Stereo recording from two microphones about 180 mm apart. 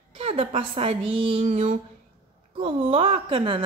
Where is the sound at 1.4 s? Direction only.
45° right (ahead or behind).